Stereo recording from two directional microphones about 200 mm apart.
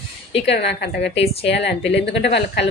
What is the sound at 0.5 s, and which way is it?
Speech, 60° left (ahead or behind).